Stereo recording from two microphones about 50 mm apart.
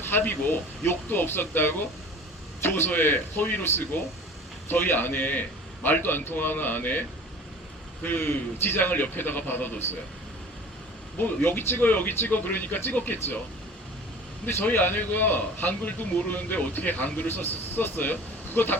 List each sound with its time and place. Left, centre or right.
0.0 s speech: left
2.9 s a man's voice: left
8.0 s a man's voice: left
11.2 s a man's voice: left
14.4 s a man's voice: left